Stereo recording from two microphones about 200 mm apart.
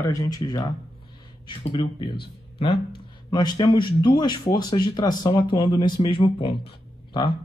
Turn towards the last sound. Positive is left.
turn(degrees=25)  # may be behind; listen again after turning